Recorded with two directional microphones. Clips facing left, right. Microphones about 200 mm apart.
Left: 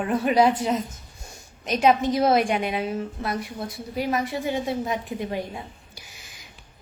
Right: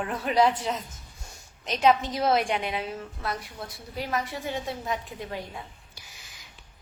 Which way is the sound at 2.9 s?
15° left (ahead or behind).